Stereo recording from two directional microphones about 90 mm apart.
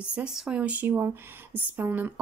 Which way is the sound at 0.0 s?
10° right (ahead or behind).